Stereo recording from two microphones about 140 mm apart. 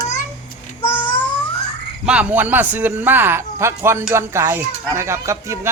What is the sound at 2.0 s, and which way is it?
Speech, 10° right (ahead or behind).